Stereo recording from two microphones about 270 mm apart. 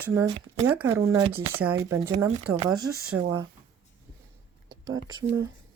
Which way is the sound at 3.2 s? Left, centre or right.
Centre.